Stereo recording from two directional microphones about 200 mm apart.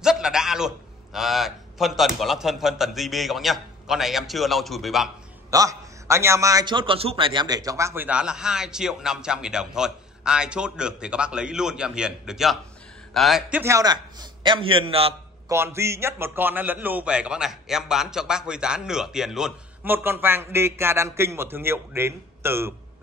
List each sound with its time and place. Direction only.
0.0 s a man's voice: 5° right (ahead or behind)
5.5 s a man's voice: 15° right (ahead or behind)
15.5 s a man's voice: 15° right (ahead or behind)